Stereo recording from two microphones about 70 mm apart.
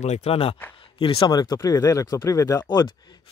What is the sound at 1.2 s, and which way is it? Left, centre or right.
Speech, left.